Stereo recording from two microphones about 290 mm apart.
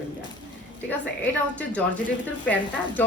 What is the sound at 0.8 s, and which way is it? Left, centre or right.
A woman's voice, centre.